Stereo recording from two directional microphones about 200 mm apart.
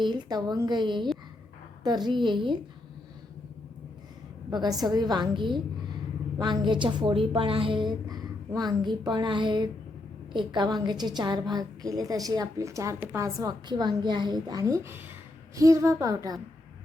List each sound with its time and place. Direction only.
0.0 s a woman's voice: 20° right (ahead or behind)
4.5 s a woman's voice: 20° right (ahead or behind)